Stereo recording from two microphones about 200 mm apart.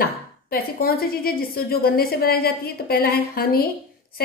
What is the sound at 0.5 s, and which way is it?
A woman's voice, 50° left (ahead or behind).